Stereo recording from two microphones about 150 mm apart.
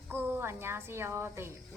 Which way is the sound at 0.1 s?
15° right (ahead or behind).